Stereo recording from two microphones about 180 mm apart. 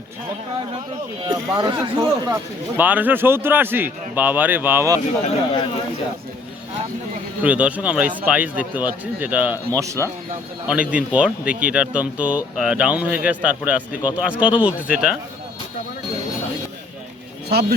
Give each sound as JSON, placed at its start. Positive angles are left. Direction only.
{"t": 1.3, "sound": "speech", "side_deg": -25}
{"t": 2.7, "sound": "speech", "side_deg": -10}
{"t": 7.4, "sound": "speech", "side_deg": -5}
{"t": 17.5, "sound": "speech", "side_deg": -60}